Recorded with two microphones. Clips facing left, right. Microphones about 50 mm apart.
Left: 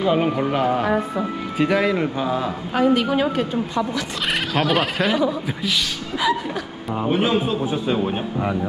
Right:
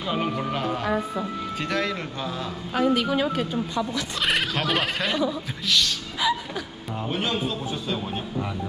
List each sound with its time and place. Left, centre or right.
0.0 s speech: centre
2.7 s a woman's voice: left
4.3 s speech: centre
7.0 s a man's voice: centre